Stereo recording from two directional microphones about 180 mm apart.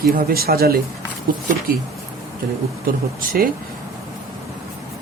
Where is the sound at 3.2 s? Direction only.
50° right (ahead or behind).